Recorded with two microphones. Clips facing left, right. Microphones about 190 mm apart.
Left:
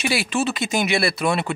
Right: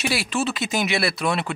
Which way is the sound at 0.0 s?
Centre (ahead or behind).